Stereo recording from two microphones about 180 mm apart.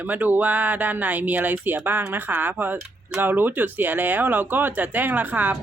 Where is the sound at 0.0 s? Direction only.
10° right (ahead or behind).